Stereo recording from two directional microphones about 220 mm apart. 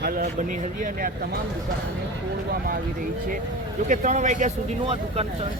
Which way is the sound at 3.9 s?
35° right (ahead or behind).